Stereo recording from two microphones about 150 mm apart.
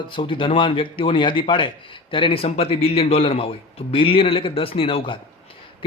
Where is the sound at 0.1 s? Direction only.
35° left (ahead or behind).